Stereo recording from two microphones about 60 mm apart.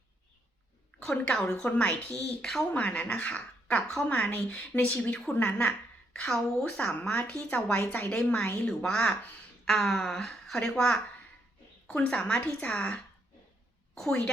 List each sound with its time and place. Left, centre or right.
1.1 s a woman's voice: centre
6.1 s a woman's voice: centre